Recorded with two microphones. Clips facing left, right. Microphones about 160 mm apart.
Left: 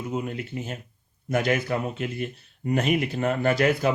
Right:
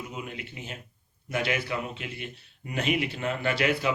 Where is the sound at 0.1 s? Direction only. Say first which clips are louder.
Left 8 dB; 40° left (ahead or behind).